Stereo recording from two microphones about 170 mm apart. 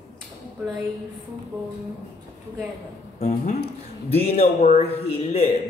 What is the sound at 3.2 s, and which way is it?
Speech, 40° left (ahead or behind).